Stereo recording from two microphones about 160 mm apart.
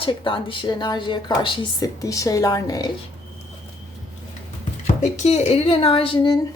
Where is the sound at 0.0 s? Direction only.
30° left (ahead or behind).